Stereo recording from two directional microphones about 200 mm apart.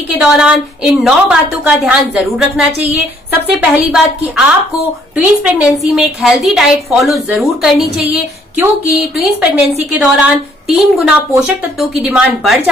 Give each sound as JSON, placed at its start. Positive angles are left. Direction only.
{"t": 0.2, "sound": "a woman's voice", "side_deg": -5}
{"t": 5.1, "sound": "a woman's voice", "side_deg": -5}